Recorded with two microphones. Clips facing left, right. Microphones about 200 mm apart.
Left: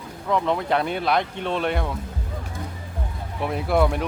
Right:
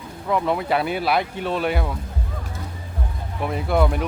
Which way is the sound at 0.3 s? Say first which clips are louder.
Right 1 dB; 5° right (ahead or behind).